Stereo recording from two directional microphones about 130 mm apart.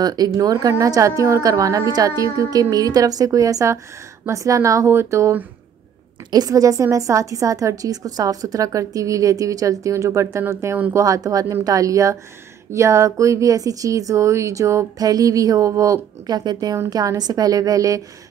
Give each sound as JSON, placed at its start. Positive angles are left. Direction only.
{"t": 0.0, "sound": "a woman's voice", "side_deg": -30}